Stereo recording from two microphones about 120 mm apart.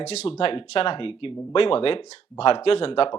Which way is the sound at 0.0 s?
65° left (ahead or behind).